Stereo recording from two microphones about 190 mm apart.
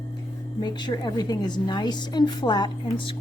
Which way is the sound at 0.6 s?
25° left (ahead or behind).